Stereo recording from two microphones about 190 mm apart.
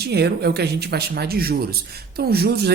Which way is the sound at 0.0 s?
60° right (ahead or behind).